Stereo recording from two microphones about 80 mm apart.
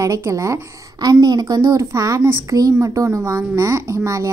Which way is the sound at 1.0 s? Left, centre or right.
Right.